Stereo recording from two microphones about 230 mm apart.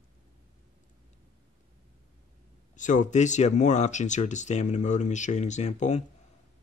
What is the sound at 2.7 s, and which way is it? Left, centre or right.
Speech, left.